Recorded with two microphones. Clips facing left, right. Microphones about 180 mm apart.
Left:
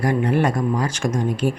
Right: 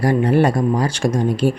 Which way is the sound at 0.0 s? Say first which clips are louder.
Right 4 dB; 30° right (ahead or behind).